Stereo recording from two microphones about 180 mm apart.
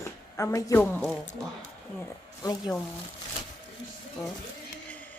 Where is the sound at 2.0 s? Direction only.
20° left (ahead or behind).